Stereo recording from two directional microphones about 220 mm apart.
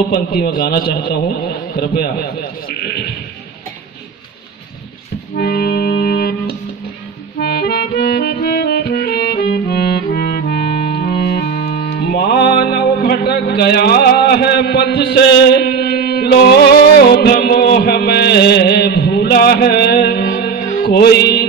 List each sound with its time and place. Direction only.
0.1 s a man's voice: 45° left (ahead or behind)
5.3 s music: 45° left (ahead or behind)